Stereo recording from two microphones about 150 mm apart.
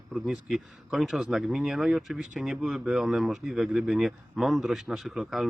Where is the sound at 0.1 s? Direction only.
Centre (ahead or behind).